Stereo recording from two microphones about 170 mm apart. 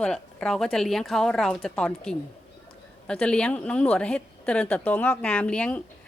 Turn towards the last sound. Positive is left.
turn(degrees=5)  # may be behind; listen again after turning